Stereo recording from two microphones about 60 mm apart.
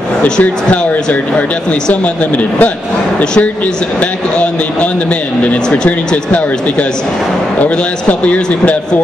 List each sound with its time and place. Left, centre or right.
0.2 s speech: left
5.4 s speech: left
8.1 s speech: left